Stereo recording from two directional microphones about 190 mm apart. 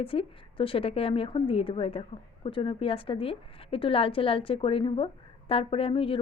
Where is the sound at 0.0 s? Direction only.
30° left (ahead or behind).